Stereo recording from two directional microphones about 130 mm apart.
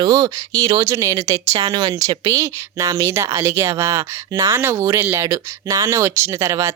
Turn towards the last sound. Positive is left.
turn(degrees=-25)  # may be behind; listen again after turning